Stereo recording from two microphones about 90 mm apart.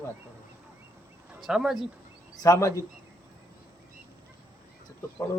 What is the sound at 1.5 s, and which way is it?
Speech, 5° right (ahead or behind).